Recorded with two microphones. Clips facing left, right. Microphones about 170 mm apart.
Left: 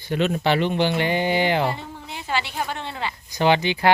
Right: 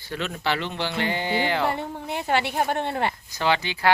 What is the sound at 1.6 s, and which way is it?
A woman's voice, 55° right (ahead or behind).